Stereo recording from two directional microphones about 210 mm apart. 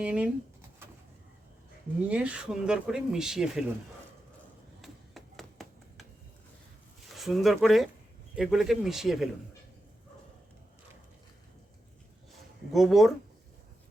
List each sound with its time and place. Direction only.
0.0 s speech: 5° right (ahead or behind)
2.0 s speech: 5° right (ahead or behind)
4.8 s a sound: centre (ahead or behind)
7.1 s speech: centre (ahead or behind)
12.7 s speech: centre (ahead or behind)